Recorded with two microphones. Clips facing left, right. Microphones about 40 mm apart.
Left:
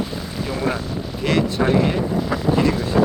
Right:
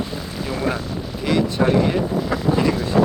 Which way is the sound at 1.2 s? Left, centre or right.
Centre.